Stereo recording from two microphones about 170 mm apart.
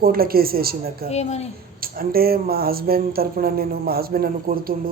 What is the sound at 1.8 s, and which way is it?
Speech, 60° right (ahead or behind).